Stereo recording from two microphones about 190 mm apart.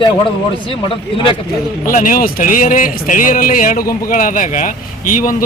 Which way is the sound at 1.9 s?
45° left (ahead or behind).